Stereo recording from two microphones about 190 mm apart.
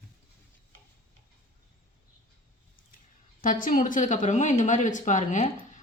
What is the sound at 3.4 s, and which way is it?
Speech, 45° left (ahead or behind).